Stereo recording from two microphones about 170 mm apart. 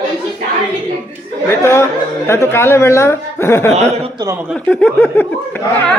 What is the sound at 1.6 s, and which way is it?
Speech, 15° left (ahead or behind).